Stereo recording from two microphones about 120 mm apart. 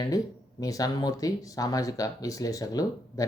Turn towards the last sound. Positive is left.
turn(degrees=30)  # may be behind; listen again after turning